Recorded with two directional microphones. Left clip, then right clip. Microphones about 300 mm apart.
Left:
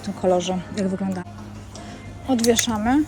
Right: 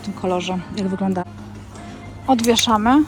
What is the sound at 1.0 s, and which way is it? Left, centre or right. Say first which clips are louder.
Speech: right 7 dB; right.